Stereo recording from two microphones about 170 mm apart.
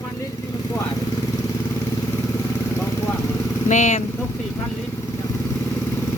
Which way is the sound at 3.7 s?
45° left (ahead or behind).